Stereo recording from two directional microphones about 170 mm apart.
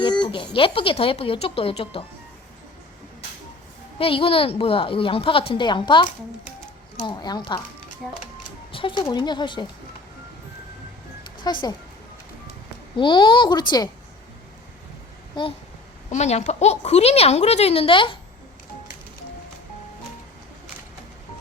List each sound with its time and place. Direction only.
0.0 s a woman's voice: 30° left (ahead or behind)
3.9 s a woman's voice: 35° left (ahead or behind)
8.7 s music: 30° left (ahead or behind)
9.1 s a woman's voice: 25° left (ahead or behind)
11.5 s a woman's voice: 25° left (ahead or behind)
13.0 s a woman's voice: 25° left (ahead or behind)
15.3 s a woman's voice: 25° left (ahead or behind)
16.0 s a woman's voice: 40° left (ahead or behind)